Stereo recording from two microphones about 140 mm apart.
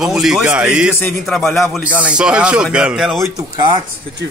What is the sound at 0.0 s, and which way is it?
A man's voice, 5° right (ahead or behind).